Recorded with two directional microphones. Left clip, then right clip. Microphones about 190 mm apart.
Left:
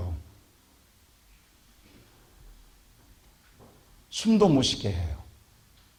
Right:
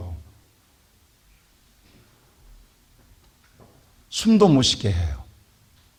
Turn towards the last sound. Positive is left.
turn(degrees=-55)  # may be behind; listen again after turning